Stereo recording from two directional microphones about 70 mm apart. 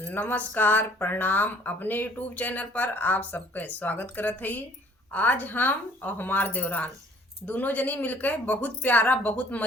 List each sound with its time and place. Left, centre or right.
0.0 s speech: left